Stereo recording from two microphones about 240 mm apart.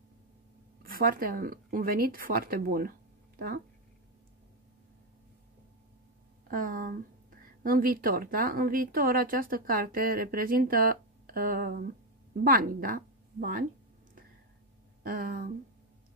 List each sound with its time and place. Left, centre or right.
0.8 s speech: right
6.5 s a woman's voice: right
15.0 s a woman's voice: right